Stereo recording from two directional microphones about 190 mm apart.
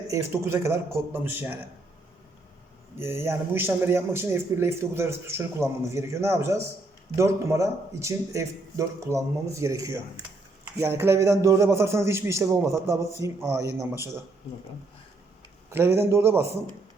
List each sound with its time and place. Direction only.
0.4 s a man's voice: 15° right (ahead or behind)
3.0 s a man's voice: 10° right (ahead or behind)
15.7 s a man's voice: 10° right (ahead or behind)